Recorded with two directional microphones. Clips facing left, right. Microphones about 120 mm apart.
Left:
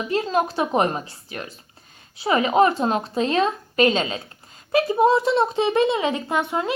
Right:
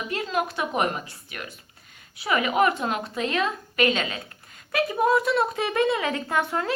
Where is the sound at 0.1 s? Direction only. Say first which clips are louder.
Left 6 dB; 30° left (ahead or behind).